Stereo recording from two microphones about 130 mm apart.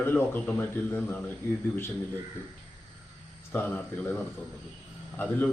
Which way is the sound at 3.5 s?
15° left (ahead or behind).